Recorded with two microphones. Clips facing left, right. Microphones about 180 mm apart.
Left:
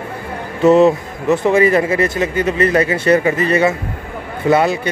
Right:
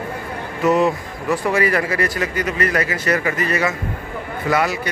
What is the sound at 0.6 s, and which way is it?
Speech, 25° left (ahead or behind).